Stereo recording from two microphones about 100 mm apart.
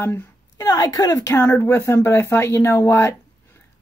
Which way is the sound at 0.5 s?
40° left (ahead or behind).